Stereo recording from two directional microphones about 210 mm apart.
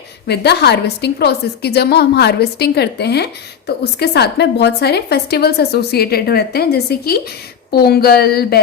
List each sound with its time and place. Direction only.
0.3 s a woman's voice: 50° left (ahead or behind)